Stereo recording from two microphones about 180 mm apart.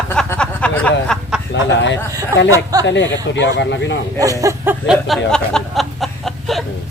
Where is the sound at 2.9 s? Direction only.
85° left.